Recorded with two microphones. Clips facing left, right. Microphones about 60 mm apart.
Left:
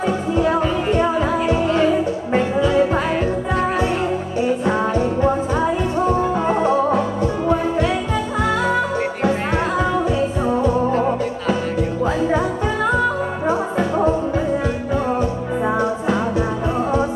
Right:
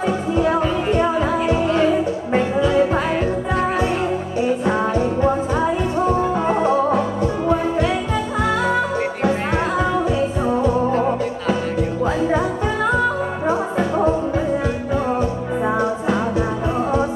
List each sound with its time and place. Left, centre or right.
0.4 s music: centre
15.6 s music: centre